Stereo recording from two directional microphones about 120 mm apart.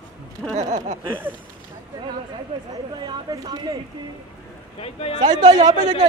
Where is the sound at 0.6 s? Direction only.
75° right (ahead or behind).